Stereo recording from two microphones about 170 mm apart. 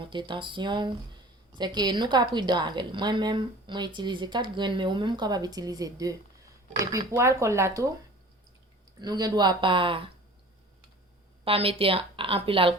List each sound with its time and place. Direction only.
0.0 s speech: 30° right (ahead or behind)
9.0 s speech: 25° right (ahead or behind)
11.4 s speech: 35° right (ahead or behind)